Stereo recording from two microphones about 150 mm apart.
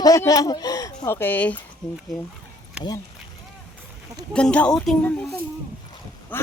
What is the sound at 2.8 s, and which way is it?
Speech, 5° right (ahead or behind).